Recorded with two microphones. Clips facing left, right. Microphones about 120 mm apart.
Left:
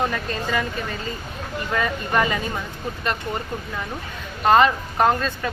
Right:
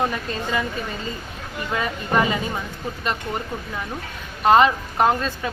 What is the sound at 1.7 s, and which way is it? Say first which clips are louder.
Speech: even; 15° right (ahead or behind).